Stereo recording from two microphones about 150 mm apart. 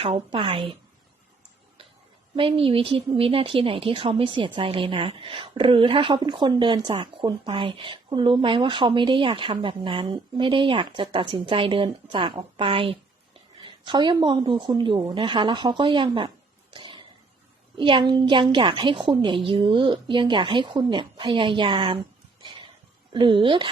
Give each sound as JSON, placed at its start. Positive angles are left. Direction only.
{"t": 0.0, "sound": "speech", "side_deg": -40}
{"t": 2.3, "sound": "speech", "side_deg": -35}
{"t": 16.7, "sound": "a sound", "side_deg": -35}
{"t": 17.7, "sound": "speech", "side_deg": -35}
{"t": 23.1, "sound": "speech", "side_deg": -35}